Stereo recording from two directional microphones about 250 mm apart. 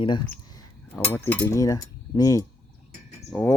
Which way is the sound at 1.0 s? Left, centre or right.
Centre.